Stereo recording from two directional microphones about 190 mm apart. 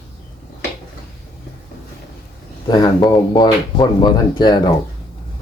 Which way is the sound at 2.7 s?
20° left (ahead or behind).